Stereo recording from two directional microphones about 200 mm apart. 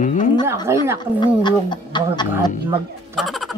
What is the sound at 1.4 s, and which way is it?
Speech, 20° left (ahead or behind).